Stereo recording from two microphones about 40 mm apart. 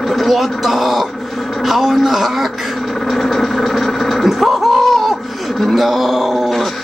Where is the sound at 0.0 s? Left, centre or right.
Centre.